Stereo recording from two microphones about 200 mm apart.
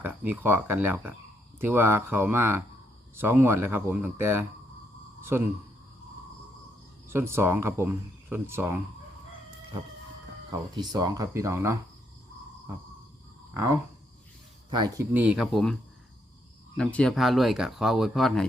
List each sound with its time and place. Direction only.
0.0 s speech: 10° right (ahead or behind)
7.1 s speech: 10° right (ahead or behind)
10.5 s speech: 20° right (ahead or behind)
13.5 s speech: 15° right (ahead or behind)
15.1 s speech: 5° right (ahead or behind)
16.7 s speech: 5° left (ahead or behind)